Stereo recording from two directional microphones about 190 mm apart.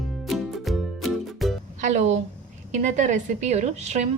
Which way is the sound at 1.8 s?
35° right (ahead or behind).